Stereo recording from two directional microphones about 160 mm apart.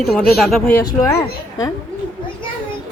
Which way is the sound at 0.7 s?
20° left (ahead or behind).